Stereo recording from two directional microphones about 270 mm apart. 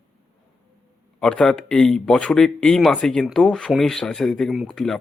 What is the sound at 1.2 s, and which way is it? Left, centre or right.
Speech, centre.